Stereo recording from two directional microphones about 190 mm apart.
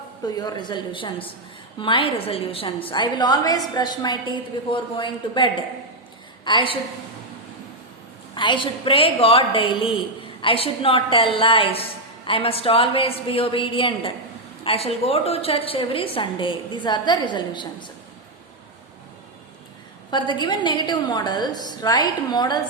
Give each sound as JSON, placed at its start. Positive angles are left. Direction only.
{"t": 0.3, "sound": "a woman's voice", "side_deg": 20}
{"t": 8.4, "sound": "a woman's voice", "side_deg": 25}
{"t": 20.1, "sound": "a woman's voice", "side_deg": 25}